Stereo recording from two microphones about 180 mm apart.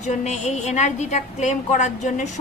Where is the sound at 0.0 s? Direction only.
40° left (ahead or behind).